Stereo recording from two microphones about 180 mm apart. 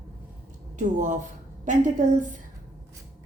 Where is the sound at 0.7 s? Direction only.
45° right (ahead or behind).